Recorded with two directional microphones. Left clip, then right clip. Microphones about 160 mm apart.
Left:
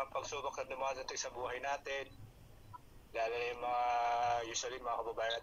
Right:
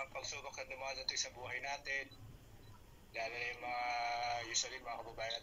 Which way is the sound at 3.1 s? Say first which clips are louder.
Left 5 dB; 35° left (ahead or behind).